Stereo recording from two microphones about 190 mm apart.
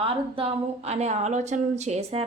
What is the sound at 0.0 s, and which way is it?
A woman's voice, 30° right (ahead or behind).